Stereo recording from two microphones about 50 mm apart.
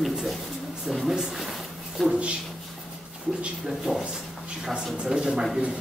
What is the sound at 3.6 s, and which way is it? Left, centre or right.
Speech, centre.